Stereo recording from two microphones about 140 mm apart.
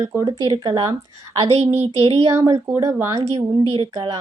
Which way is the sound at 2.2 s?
25° right (ahead or behind).